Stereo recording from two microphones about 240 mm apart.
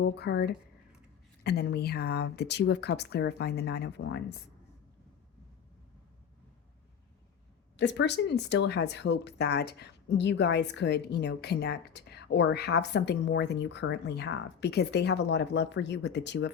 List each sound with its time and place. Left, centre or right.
0.0 s speech: left
7.8 s speech: left